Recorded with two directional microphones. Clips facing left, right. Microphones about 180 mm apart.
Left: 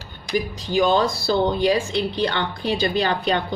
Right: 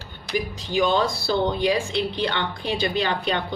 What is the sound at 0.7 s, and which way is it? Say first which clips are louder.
A woman's voice: left 3 dB; 40° left (ahead or behind).